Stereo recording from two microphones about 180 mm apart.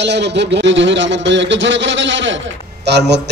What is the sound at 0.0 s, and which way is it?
Speech, 70° right (ahead or behind).